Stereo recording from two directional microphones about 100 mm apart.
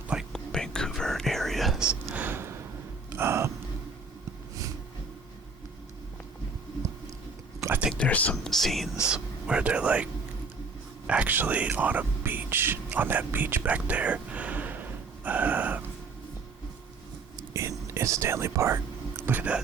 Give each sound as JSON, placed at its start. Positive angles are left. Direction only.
{"t": 0.3, "sound": "whispering", "side_deg": 5}
{"t": 3.2, "sound": "a sound", "side_deg": -25}
{"t": 7.9, "sound": "speech", "side_deg": 15}
{"t": 8.4, "sound": "speech", "side_deg": 0}
{"t": 9.0, "sound": "speech", "side_deg": -10}
{"t": 11.0, "sound": "whispering", "side_deg": -15}
{"t": 17.5, "sound": "whispering", "side_deg": -30}